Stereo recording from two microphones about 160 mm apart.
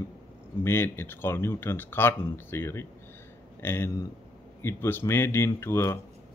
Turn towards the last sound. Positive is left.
turn(degrees=15)  # may be behind; listen again after turning